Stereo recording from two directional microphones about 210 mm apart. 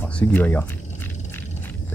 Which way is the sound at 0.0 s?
5° left (ahead or behind).